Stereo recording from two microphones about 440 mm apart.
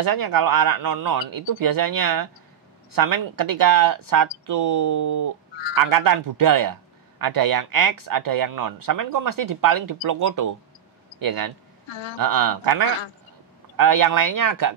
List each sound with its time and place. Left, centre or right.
0.0 s a man's voice: right